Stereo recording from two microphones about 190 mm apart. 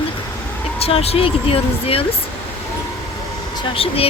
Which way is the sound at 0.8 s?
30° left (ahead or behind).